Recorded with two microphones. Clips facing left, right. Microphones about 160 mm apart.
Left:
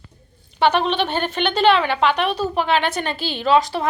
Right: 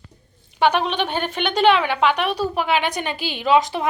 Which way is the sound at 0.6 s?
10° right (ahead or behind).